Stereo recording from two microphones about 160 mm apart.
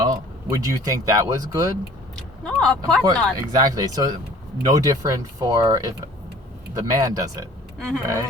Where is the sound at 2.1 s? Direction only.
5° left (ahead or behind).